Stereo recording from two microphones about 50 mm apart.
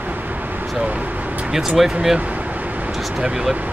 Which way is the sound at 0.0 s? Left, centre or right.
Right.